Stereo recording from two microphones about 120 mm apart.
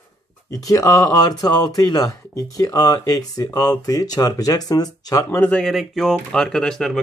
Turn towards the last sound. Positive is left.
turn(degrees=5)  # may be behind; listen again after turning